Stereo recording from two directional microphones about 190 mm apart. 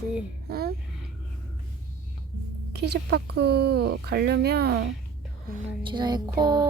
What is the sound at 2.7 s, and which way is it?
Speech, 60° right (ahead or behind).